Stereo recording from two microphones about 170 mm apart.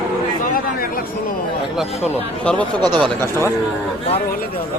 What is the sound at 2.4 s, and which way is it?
Speech, 5° left (ahead or behind).